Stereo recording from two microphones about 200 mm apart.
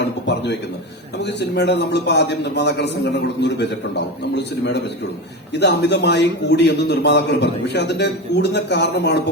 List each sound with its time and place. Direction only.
0.0 s a sound: 60° left (ahead or behind)
1.2 s a man's voice: 55° left (ahead or behind)
5.5 s a man's voice: 60° left (ahead or behind)